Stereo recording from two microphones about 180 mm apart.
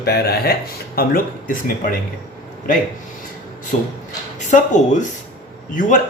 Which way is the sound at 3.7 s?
40° left (ahead or behind).